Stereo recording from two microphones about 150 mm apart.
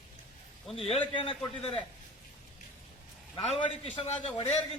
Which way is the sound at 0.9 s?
35° left (ahead or behind).